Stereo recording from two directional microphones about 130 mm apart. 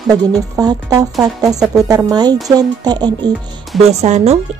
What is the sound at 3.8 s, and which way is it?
Speech, 55° right (ahead or behind).